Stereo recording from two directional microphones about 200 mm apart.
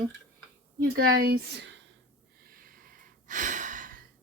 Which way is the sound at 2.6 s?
45° right (ahead or behind).